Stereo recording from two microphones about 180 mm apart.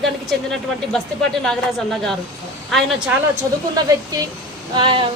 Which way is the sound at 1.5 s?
5° left (ahead or behind).